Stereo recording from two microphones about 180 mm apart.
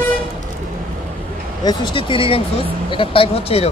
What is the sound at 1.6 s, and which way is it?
Speech, 25° left (ahead or behind).